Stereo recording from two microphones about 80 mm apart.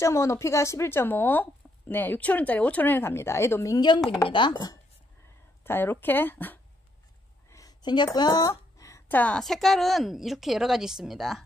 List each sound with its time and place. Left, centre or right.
0.0 s speech: left
3.7 s speech: left
5.6 s speech: left
7.4 s a sound: left
7.8 s speech: left
9.1 s speech: centre
9.4 s speech: centre